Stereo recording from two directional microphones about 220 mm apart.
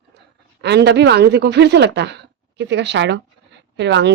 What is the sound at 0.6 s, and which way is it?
Speech, 50° right (ahead or behind).